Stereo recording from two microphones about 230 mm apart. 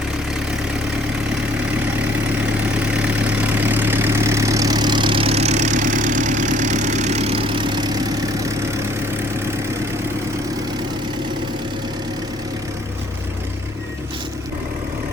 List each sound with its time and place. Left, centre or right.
3.2 s vehicle: centre